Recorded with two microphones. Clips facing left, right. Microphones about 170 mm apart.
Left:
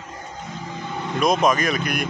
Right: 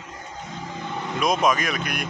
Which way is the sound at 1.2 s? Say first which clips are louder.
Left 3 dB; centre (ahead or behind).